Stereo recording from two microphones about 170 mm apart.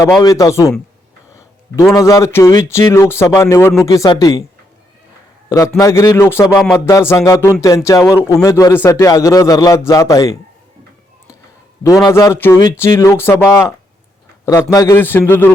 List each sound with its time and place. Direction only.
0.0 s speech: 20° left (ahead or behind)
1.7 s a man's voice: 15° left (ahead or behind)
5.5 s a man's voice: 20° left (ahead or behind)
11.8 s a man's voice: 20° left (ahead or behind)